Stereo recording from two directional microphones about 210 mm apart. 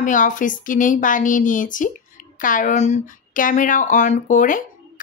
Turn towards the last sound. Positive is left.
turn(degrees=35)  # may be behind; listen again after turning